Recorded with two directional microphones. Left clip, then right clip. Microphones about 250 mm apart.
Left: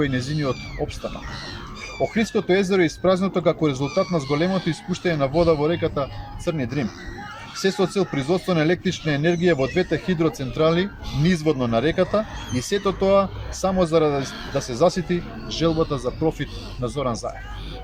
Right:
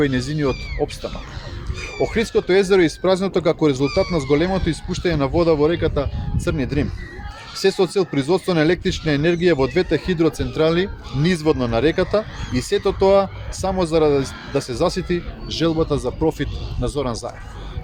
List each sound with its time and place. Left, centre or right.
0.0 s speech: right
2.1 s speech: right